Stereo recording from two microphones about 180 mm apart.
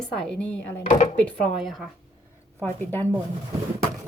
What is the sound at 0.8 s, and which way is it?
Speech, 40° left (ahead or behind).